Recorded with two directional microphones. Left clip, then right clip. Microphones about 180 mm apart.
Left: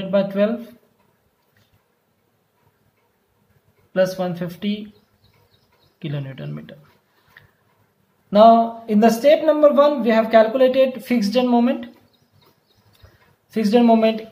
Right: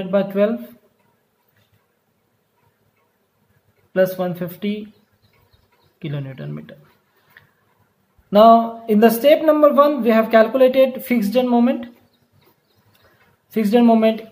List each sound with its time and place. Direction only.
0.1 s speech: 20° right (ahead or behind)
3.9 s speech: 15° right (ahead or behind)
5.9 s speech: 15° right (ahead or behind)
8.3 s speech: 25° right (ahead or behind)
13.5 s speech: 15° right (ahead or behind)